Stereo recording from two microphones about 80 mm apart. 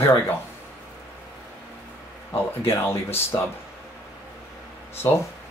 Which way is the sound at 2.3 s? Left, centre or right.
Left.